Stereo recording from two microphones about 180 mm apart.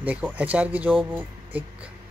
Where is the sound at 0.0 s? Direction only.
10° right (ahead or behind).